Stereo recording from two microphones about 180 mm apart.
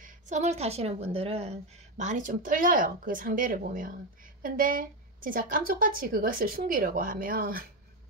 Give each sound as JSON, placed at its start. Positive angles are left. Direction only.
{"t": 0.0, "sound": "speech", "side_deg": -40}